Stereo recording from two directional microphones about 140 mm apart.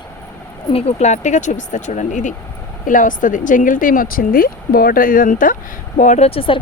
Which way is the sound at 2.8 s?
75° left (ahead or behind).